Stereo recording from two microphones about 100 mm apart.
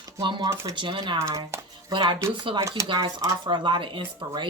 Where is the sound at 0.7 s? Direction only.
50° right (ahead or behind).